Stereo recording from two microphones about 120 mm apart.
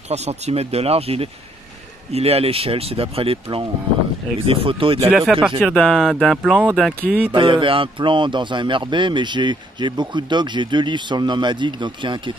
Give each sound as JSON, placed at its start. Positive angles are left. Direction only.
{"t": 0.1, "sound": "speech", "side_deg": -65}
{"t": 5.1, "sound": "speech", "side_deg": -5}
{"t": 6.7, "sound": "speech", "side_deg": 5}
{"t": 7.1, "sound": "speech", "side_deg": -15}
{"t": 7.3, "sound": "a man's voice", "side_deg": -45}